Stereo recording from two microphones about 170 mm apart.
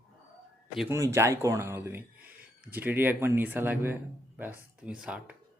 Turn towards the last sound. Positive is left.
turn(degrees=-5)  # may be behind; listen again after turning